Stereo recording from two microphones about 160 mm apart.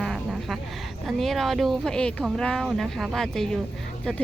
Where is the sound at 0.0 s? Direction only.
Centre (ahead or behind).